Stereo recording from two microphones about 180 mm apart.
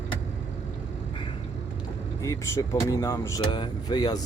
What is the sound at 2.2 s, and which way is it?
Speech, 15° left (ahead or behind).